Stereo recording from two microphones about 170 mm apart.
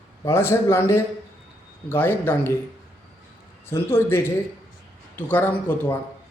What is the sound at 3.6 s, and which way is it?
A man's voice, 15° left (ahead or behind).